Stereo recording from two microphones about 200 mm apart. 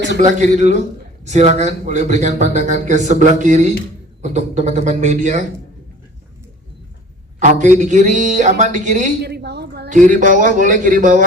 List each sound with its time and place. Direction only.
0.2 s a man's voice: 40° right (ahead or behind)
7.3 s a man's voice: 35° right (ahead or behind)
9.2 s a sound: 55° right (ahead or behind)
9.9 s a man's voice: 40° right (ahead or behind)